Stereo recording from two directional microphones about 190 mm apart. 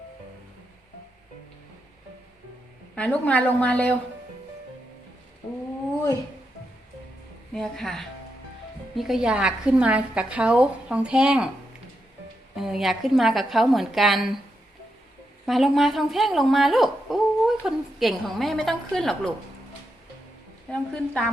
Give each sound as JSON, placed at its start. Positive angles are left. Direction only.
{"t": 2.9, "sound": "a woman's voice", "side_deg": 5}
{"t": 7.5, "sound": "a woman's voice", "side_deg": 0}
{"t": 12.5, "sound": "a woman's voice", "side_deg": 0}
{"t": 15.4, "sound": "a woman's voice", "side_deg": 0}
{"t": 20.7, "sound": "a woman's voice", "side_deg": 5}